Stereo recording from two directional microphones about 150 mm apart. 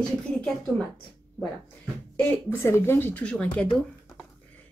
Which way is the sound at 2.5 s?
15° left (ahead or behind).